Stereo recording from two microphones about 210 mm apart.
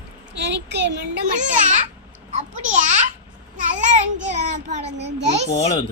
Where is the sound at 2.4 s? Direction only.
35° right (ahead or behind).